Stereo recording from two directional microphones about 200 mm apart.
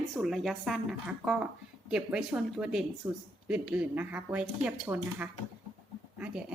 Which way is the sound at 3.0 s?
15° right (ahead or behind).